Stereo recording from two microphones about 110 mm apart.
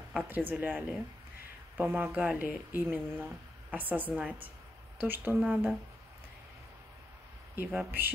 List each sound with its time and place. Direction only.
0.3 s speech: 15° right (ahead or behind)
7.5 s speech: 20° right (ahead or behind)